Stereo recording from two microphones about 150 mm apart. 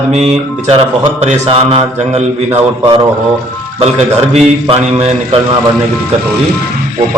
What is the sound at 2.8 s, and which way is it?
Speech, 30° right (ahead or behind).